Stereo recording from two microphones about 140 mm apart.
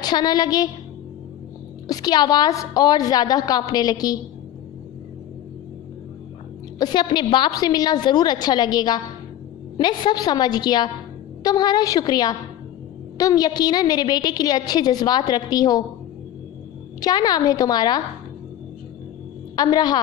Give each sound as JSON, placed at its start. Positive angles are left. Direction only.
{"t": 0.0, "sound": "a woman's voice", "side_deg": 30}
{"t": 1.9, "sound": "a woman's voice", "side_deg": 30}
{"t": 6.8, "sound": "a woman's voice", "side_deg": 30}
{"t": 17.0, "sound": "a woman's voice", "side_deg": 30}
{"t": 19.5, "sound": "a woman's voice", "side_deg": 30}